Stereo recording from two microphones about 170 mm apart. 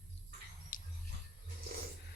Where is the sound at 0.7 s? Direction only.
50° left (ahead or behind).